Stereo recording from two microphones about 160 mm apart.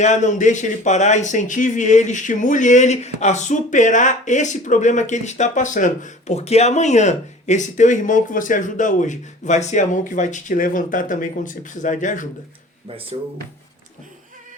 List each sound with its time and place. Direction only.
0.0 s speech: 50° left (ahead or behind)